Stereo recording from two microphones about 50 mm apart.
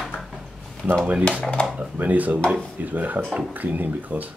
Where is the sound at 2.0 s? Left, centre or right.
Right.